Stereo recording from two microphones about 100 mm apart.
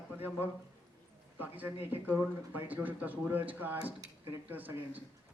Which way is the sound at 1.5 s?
15° right (ahead or behind).